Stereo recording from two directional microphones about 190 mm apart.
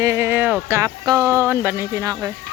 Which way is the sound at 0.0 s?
15° right (ahead or behind).